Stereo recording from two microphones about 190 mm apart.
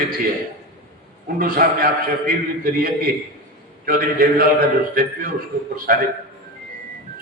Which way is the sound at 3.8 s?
50° right (ahead or behind).